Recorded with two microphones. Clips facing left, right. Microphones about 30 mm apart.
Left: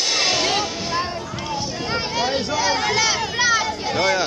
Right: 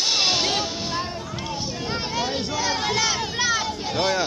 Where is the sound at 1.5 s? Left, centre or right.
Left.